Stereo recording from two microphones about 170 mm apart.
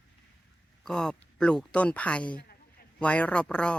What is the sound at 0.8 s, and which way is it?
Speech, 5° left (ahead or behind).